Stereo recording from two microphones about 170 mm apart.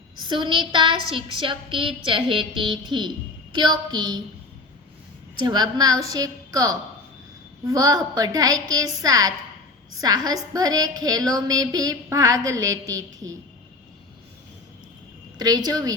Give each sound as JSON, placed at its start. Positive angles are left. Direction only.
{"t": 0.3, "sound": "a woman's voice", "side_deg": -25}
{"t": 5.4, "sound": "a woman's voice", "side_deg": -25}
{"t": 15.4, "sound": "a woman's voice", "side_deg": -25}